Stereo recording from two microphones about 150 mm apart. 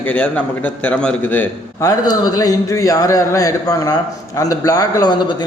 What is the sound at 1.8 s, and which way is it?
A man's voice, 25° left (ahead or behind).